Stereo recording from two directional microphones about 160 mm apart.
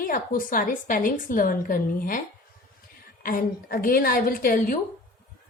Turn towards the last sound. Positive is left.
turn(degrees=60)  # may be behind; listen again after turning